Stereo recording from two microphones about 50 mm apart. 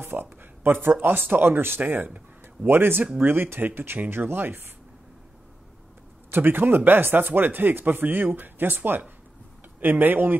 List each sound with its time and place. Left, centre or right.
0.0 s speech: right
2.7 s speech: right
6.3 s speech: right